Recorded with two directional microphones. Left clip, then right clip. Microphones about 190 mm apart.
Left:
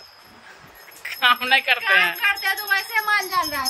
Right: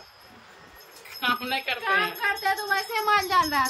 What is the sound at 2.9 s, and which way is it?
Speech, 65° right (ahead or behind).